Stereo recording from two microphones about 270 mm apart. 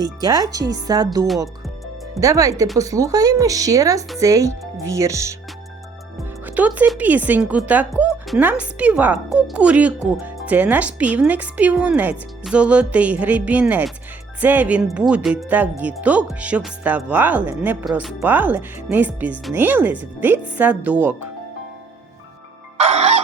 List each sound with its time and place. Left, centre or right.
0.0 s speech: centre
6.4 s speech: centre
22.8 s music: right